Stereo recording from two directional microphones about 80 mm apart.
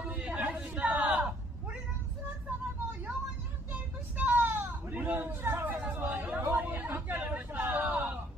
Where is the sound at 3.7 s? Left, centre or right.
Centre.